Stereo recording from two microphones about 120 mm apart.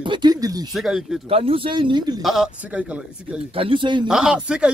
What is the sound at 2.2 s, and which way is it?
Speech, centre (ahead or behind).